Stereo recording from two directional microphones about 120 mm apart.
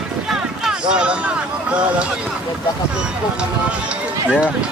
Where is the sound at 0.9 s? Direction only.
10° right (ahead or behind).